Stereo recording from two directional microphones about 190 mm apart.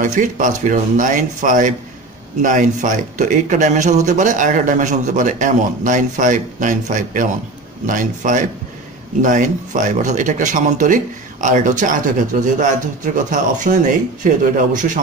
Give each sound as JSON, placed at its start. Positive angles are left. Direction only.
{"t": 0.0, "sound": "a man's voice", "side_deg": -40}